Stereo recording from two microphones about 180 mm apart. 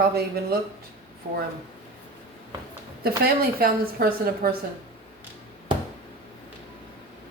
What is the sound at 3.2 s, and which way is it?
Speech, 55° right (ahead or behind).